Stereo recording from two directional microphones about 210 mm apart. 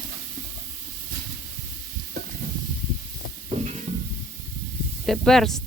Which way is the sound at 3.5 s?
30° right (ahead or behind).